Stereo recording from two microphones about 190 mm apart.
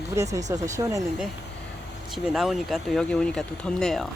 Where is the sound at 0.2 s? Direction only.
15° right (ahead or behind).